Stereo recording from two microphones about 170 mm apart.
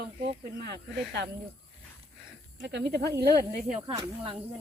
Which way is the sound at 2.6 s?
85° right.